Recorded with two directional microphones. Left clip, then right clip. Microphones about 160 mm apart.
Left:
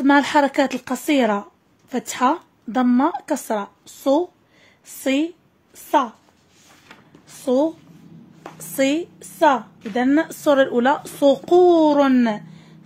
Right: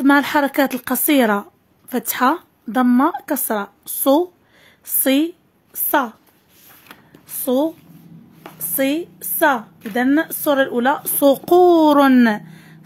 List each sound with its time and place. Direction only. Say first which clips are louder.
0.0 s speech: right 1 dB; 20° right (ahead or behind)
5.0 s a sound: right 3 dB; 30° right (ahead or behind)
6.9 s a sound: right 3 dB; 75° right (ahead or behind)
7.3 s speech: even; 20° right (ahead or behind)
8.5 s speech: even; centre (ahead or behind)
9.2 s a woman's voice: even; 20° right (ahead or behind)
10.2 s a woman's voice: left 1 dB; centre (ahead or behind)
11.0 s a woman's voice: right 2 dB; 20° right (ahead or behind); by 12.7 s 35° right (ahead or behind)